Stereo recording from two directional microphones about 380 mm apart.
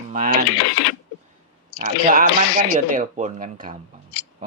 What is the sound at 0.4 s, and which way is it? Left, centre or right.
Speech, left.